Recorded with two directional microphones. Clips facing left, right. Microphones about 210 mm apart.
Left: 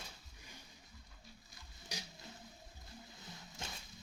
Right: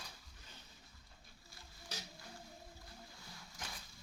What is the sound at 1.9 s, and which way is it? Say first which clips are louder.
Music: left 1 dB; 15° left (ahead or behind).